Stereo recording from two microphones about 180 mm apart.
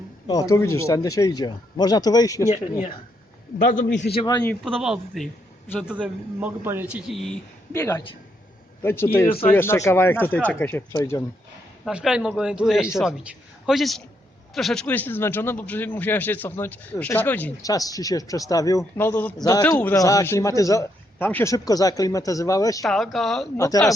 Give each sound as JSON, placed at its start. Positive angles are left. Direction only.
{"t": 0.3, "sound": "speech", "side_deg": 20}
{"t": 4.1, "sound": "speech", "side_deg": 25}
{"t": 4.4, "sound": "a man's voice", "side_deg": 0}
{"t": 7.7, "sound": "a man's voice", "side_deg": 15}
{"t": 11.9, "sound": "a man's voice", "side_deg": -5}
{"t": 17.6, "sound": "a man's voice", "side_deg": 20}
{"t": 22.8, "sound": "a man's voice", "side_deg": 0}
{"t": 23.6, "sound": "speech", "side_deg": 20}